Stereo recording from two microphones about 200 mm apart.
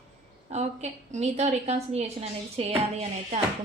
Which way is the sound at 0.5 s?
35° right (ahead or behind).